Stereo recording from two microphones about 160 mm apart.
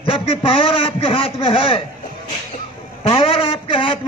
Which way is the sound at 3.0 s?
35° left (ahead or behind).